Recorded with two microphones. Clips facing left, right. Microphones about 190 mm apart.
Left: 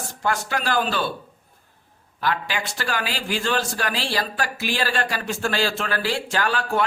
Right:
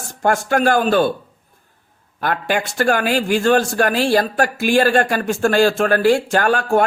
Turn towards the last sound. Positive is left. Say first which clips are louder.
# right 8 dB
turn(degrees=-50)  # may be behind; listen again after turning